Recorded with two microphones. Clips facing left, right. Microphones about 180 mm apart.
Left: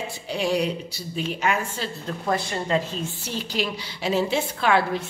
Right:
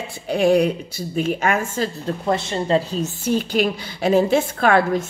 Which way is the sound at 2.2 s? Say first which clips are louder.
Right 3 dB; 25° right (ahead or behind).